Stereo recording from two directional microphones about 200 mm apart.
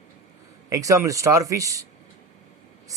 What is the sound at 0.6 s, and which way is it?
A man's voice, 15° right (ahead or behind).